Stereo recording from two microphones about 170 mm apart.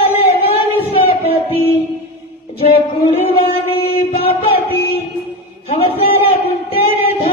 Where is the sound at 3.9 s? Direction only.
60° left (ahead or behind).